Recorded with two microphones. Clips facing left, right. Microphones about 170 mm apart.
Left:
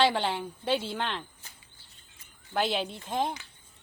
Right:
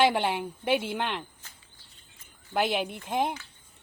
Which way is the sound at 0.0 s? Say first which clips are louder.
Right 2 dB; 15° right (ahead or behind).